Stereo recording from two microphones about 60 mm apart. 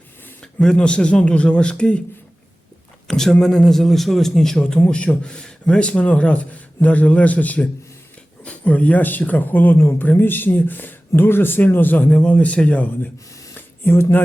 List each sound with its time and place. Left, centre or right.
0.4 s speech: centre
3.1 s speech: centre
4.8 s a man's voice: left
9.7 s speech: left
10.1 s speech: left
12.1 s a man's voice: left
13.5 s a sound: left